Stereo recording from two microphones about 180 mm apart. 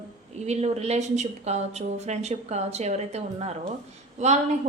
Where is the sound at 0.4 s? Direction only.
35° right (ahead or behind).